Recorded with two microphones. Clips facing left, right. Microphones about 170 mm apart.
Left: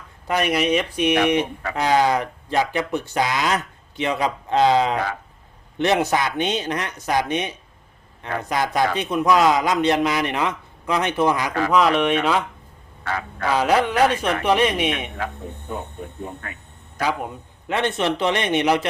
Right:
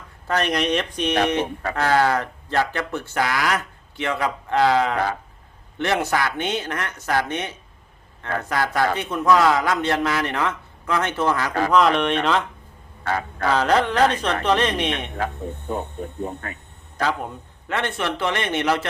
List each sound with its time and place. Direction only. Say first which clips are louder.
0.3 s speech: left 2 dB; 10° left (ahead or behind)
11.7 s speech: left 1 dB; 5° left (ahead or behind)
13.5 s speech: even; 10° left (ahead or behind)
16.4 s a man's voice: right 2 dB; 35° right (ahead or behind)
17.0 s a man's voice: even; 10° left (ahead or behind)